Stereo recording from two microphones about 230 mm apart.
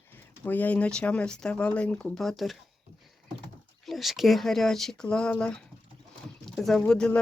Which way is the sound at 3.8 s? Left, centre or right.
Centre.